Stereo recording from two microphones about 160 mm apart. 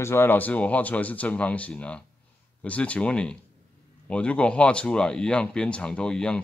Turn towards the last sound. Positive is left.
turn(degrees=5)  # may be behind; listen again after turning